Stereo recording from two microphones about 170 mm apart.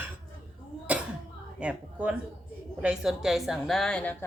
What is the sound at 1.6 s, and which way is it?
Speech, 10° right (ahead or behind).